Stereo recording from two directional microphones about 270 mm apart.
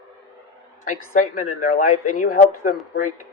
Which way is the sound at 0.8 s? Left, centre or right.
Left.